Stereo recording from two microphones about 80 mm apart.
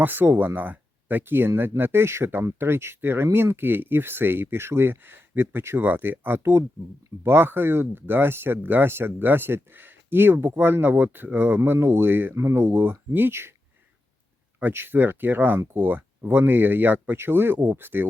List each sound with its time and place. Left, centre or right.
0.0 s speech: right
14.6 s speech: right